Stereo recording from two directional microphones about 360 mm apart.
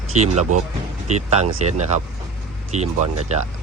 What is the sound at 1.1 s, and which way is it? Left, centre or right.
Speech, centre.